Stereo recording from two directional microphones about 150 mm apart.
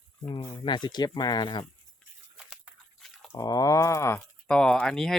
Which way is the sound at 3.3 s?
25° left (ahead or behind).